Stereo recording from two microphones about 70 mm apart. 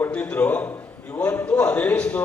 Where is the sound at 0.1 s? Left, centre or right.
Centre.